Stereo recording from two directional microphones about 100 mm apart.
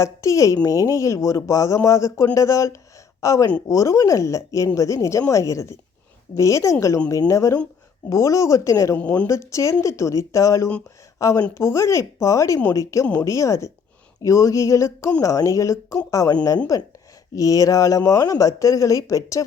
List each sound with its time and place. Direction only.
0.0 s a woman's voice: 30° left (ahead or behind)
9.0 s a woman's voice: 15° left (ahead or behind)
9.2 s a woman's voice: 30° left (ahead or behind)